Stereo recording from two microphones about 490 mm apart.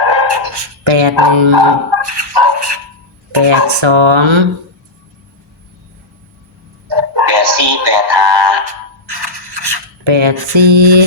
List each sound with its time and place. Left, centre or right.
0.1 s dog: right
2.0 s music: right
3.3 s speech: right
6.8 s music: right
9.0 s scissors: right